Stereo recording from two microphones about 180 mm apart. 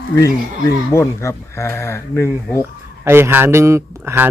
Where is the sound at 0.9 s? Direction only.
15° left (ahead or behind).